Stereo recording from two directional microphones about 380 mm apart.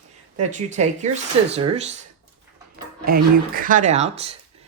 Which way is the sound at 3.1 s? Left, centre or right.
Right.